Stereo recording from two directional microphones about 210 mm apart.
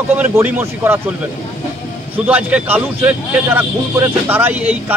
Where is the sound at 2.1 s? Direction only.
5° right (ahead or behind).